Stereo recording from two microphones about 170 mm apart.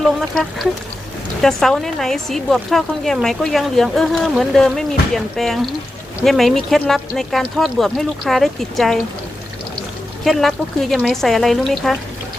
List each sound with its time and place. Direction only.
0.0 s a woman's voice: centre (ahead or behind)
10.2 s a woman's voice: centre (ahead or behind)